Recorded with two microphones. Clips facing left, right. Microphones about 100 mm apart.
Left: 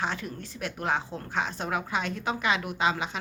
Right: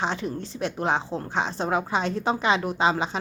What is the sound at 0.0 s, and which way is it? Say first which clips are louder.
A woman's voice: right 5 dB; 25° right (ahead or behind).